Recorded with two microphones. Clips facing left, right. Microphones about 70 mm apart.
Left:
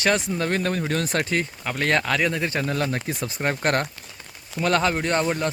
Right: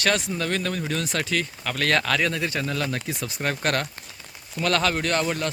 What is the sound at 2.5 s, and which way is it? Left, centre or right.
Speech, left.